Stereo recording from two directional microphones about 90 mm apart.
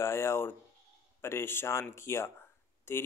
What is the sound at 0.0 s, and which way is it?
Speech, 30° left (ahead or behind).